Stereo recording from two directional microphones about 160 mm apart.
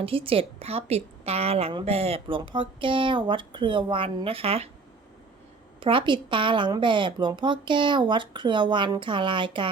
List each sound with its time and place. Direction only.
0.0 s a woman's voice: 35° right (ahead or behind)
5.8 s a woman's voice: 30° right (ahead or behind)